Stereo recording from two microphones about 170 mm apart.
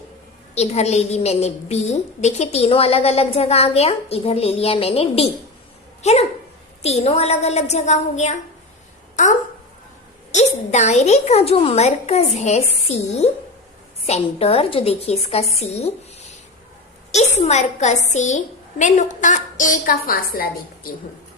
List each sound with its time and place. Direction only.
0.5 s a woman's voice: 40° left (ahead or behind)
10.3 s a woman's voice: 40° left (ahead or behind)
17.1 s a woman's voice: 40° left (ahead or behind); by 20.9 s 60° left (ahead or behind)